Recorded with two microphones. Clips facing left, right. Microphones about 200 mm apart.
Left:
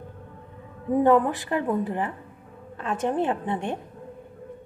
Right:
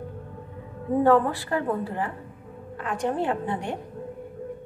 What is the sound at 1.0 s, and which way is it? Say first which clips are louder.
A woman's voice: even; 20° left (ahead or behind).